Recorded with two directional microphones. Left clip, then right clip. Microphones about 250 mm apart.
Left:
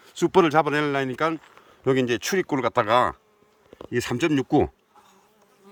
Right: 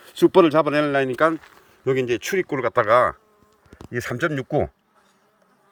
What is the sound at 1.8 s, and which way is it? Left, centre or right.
Speech, centre.